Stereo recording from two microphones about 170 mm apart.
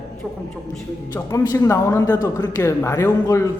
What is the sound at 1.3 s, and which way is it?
A man's voice, 20° left (ahead or behind).